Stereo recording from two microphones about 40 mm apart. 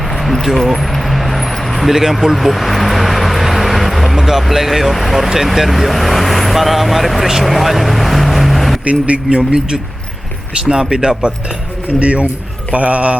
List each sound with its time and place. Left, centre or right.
0.4 s a sound: centre
1.9 s speech: centre
8.8 s speech: right
9.5 s speech: centre
10.9 s speech: centre
11.9 s speech: right